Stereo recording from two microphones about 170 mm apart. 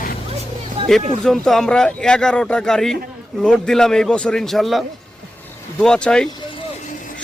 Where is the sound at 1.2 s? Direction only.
Centre (ahead or behind).